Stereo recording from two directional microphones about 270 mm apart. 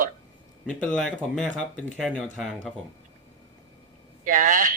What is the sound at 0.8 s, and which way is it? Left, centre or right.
Speech, centre.